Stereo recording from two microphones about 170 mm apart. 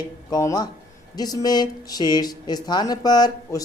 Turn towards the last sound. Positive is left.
turn(degrees=20)  # may be behind; listen again after turning